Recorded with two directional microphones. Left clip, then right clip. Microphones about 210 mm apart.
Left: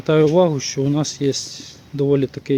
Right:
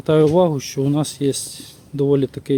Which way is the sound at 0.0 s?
15° right (ahead or behind).